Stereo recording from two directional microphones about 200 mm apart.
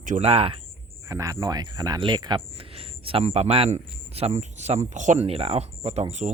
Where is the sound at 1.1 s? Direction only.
15° right (ahead or behind); by 6.3 s 35° right (ahead or behind).